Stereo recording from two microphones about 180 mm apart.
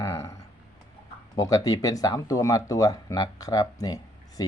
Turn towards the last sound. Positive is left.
turn(degrees=20)  # may be behind; listen again after turning